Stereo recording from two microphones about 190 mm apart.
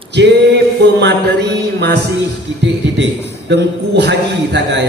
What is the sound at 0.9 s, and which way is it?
A man's voice, 60° right (ahead or behind).